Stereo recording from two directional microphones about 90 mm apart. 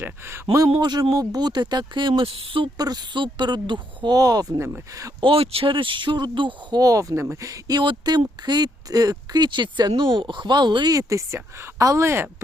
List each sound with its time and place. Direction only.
0.0 s speech: 25° right (ahead or behind)
0.8 s a woman's voice: 50° right (ahead or behind); by 2.6 s 80° right
2.7 s a woman's voice: 45° right (ahead or behind)
5.2 s speech: 90° right; by 6.7 s 60° right (ahead or behind)
6.7 s speech: 40° right (ahead or behind)
7.8 s speech: 55° right (ahead or behind)
10.9 s speech: 35° right (ahead or behind)